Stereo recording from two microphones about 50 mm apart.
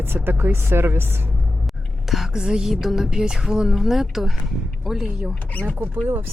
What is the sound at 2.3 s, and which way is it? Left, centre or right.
Speech, centre.